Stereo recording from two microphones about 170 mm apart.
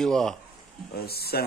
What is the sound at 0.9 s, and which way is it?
Speech, 65° left (ahead or behind).